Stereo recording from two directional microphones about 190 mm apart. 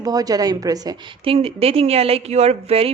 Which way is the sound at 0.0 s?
20° right (ahead or behind).